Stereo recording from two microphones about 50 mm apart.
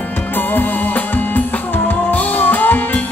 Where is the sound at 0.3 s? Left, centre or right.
Left.